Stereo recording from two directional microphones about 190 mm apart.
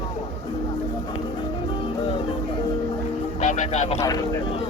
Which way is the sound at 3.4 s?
40° left (ahead or behind).